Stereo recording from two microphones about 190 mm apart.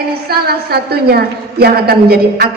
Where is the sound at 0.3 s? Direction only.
55° right (ahead or behind).